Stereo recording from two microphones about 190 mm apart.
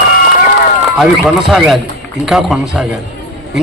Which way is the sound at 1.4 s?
Centre (ahead or behind).